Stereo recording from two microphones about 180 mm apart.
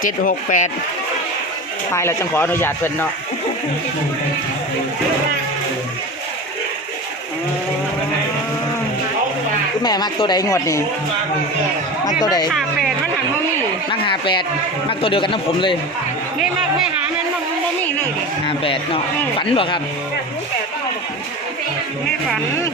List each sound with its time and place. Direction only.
0.0 s speech: 45° left (ahead or behind)
1.9 s speech: 15° left (ahead or behind)
9.8 s speech: 20° left (ahead or behind)
12.2 s a man's voice: 20° left (ahead or behind)
12.5 s speech: centre (ahead or behind)
14.1 s a man's voice: 25° left (ahead or behind)
18.4 s a man's voice: 30° left (ahead or behind)